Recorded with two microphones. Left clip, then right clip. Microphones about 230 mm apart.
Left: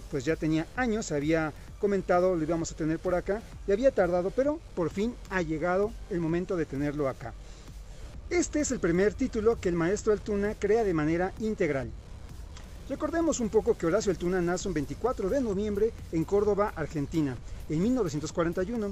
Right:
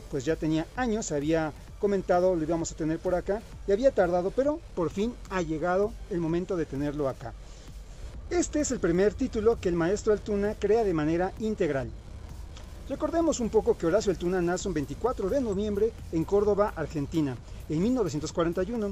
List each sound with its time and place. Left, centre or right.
0.1 s speech: centre